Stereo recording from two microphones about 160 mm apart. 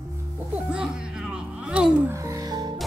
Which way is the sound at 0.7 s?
5° right (ahead or behind).